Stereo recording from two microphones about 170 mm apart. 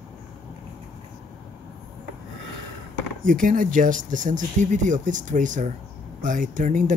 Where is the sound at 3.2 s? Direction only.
50° right (ahead or behind).